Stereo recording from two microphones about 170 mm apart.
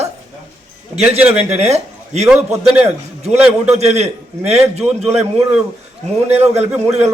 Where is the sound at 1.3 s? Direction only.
40° right (ahead or behind).